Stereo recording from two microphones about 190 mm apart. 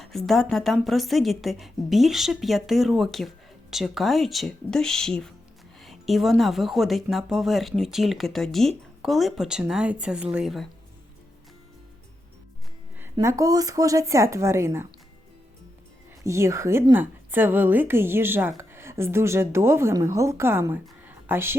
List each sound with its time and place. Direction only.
0.0 s a woman's voice: centre (ahead or behind)
13.1 s a woman's voice: 15° right (ahead or behind)
16.2 s a woman's voice: 15° right (ahead or behind)